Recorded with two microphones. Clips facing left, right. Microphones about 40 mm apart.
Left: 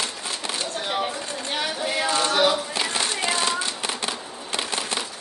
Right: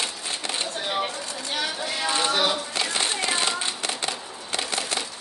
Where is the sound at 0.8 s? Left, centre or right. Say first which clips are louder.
Left 1 dB; centre.